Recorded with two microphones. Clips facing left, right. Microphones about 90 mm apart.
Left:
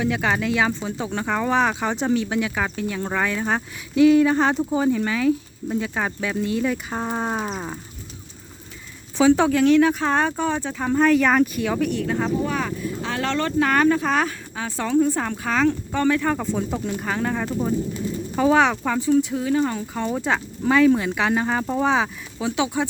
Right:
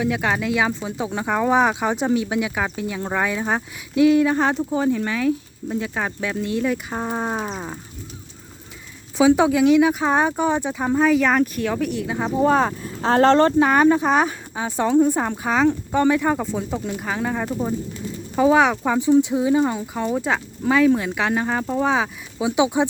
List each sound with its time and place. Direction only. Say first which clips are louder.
0.0 s speech: even; centre (ahead or behind)
9.1 s speech: right 1 dB; 10° right (ahead or behind)
12.4 s speech: right 7 dB; 35° right (ahead or behind)
13.6 s speech: right 3 dB; 20° right (ahead or behind)
16.4 s speech: even; centre (ahead or behind)
22.4 s speech: right 4 dB; 15° right (ahead or behind)